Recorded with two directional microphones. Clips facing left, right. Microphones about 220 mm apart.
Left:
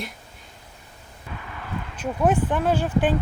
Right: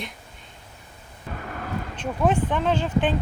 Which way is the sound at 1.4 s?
50° right (ahead or behind).